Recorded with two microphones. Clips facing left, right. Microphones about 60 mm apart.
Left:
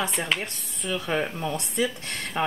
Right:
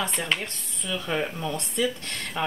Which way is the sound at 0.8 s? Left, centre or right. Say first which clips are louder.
Left 2 dB; left.